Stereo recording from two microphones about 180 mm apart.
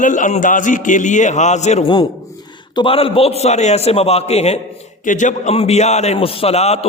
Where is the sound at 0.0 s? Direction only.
45° left (ahead or behind).